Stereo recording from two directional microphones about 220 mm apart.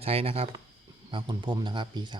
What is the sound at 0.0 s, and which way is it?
Speech, 25° right (ahead or behind).